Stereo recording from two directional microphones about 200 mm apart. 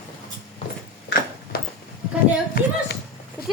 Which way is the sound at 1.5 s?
50° left (ahead or behind).